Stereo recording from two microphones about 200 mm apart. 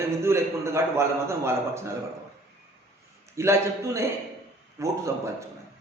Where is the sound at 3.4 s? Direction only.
15° right (ahead or behind).